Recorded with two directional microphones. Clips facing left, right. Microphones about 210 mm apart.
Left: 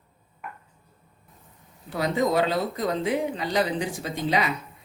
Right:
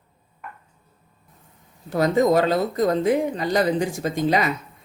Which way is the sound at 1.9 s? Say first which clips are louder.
Right 6 dB; 45° right (ahead or behind).